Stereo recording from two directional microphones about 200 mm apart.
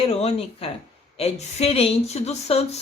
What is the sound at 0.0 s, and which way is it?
A woman's voice, 30° left (ahead or behind).